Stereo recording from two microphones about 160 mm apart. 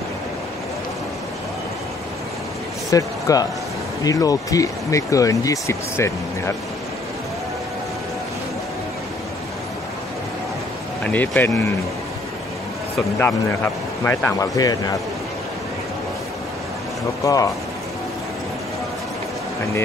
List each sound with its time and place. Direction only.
2.9 s a man's voice: 20° left (ahead or behind)
11.1 s speech: 10° left (ahead or behind)
14.0 s speech: 15° left (ahead or behind)
17.2 s speech: 20° left (ahead or behind)